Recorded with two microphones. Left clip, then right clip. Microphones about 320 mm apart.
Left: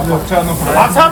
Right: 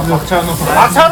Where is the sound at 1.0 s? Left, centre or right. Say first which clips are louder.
Even; right.